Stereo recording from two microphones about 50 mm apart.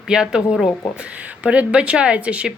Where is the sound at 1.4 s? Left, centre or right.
Right.